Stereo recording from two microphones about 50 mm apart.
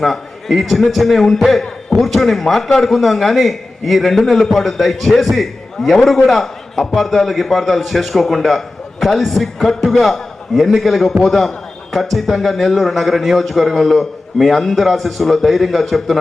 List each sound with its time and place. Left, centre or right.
0.0 s a man's voice: centre